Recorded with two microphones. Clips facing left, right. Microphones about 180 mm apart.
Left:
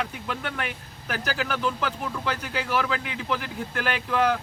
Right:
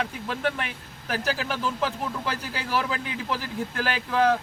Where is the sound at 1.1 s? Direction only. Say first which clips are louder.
Right 1 dB; 30° right (ahead or behind).